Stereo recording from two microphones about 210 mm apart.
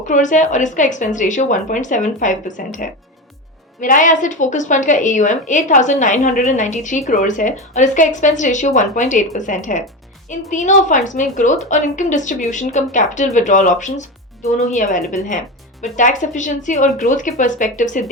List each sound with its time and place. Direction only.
0.0 s a woman's voice: 35° left (ahead or behind)